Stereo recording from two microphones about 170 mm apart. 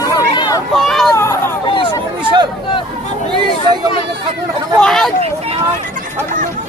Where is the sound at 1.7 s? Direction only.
30° left (ahead or behind).